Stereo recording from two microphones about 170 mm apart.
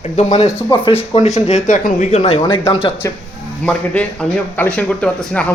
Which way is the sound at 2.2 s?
30° left (ahead or behind).